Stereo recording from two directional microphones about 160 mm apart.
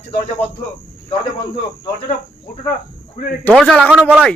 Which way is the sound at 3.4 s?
5° left (ahead or behind).